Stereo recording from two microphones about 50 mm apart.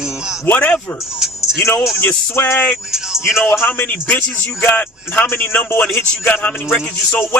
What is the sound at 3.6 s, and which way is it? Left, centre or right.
Speech, left.